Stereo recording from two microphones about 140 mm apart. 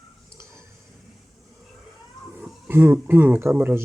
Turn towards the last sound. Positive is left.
turn(degrees=-15)  # may be behind; listen again after turning